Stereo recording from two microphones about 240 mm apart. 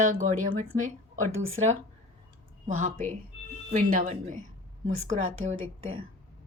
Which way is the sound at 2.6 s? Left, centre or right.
Right.